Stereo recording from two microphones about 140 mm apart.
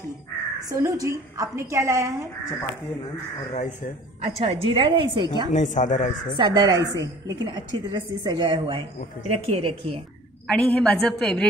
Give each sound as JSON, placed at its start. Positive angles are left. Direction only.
{"t": 0.7, "sound": "a woman's voice", "side_deg": -20}
{"t": 3.5, "sound": "speech", "side_deg": 60}
{"t": 4.2, "sound": "a woman's voice", "side_deg": -45}
{"t": 5.5, "sound": "speech", "side_deg": 65}
{"t": 6.3, "sound": "a woman's voice", "side_deg": -30}
{"t": 10.4, "sound": "a woman's voice", "side_deg": 5}